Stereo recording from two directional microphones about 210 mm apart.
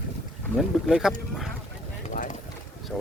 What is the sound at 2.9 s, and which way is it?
Speech, centre (ahead or behind).